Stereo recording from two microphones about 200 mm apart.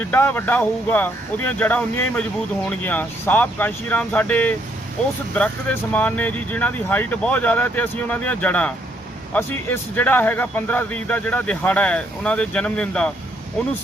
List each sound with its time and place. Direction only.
0.0 s a man's voice: 10° left (ahead or behind)